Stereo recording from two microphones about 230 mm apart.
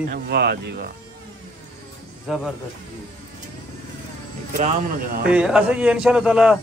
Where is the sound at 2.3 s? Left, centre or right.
Centre.